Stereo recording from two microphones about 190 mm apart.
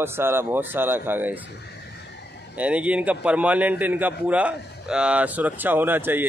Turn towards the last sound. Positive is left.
turn(degrees=-10)  # may be behind; listen again after turning